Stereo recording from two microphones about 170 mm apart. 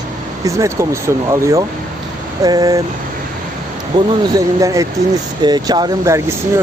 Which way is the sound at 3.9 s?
25° right (ahead or behind).